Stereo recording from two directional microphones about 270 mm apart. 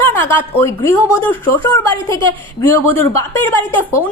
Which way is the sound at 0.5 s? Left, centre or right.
Centre.